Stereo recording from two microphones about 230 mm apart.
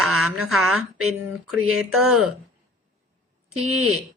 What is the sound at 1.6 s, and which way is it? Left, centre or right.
Speech, right.